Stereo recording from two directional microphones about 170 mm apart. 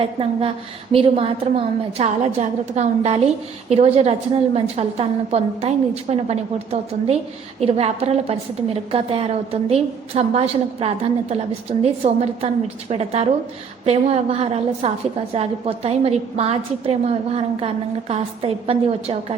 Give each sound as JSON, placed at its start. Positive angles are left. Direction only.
{"t": 0.0, "sound": "a woman's voice", "side_deg": -35}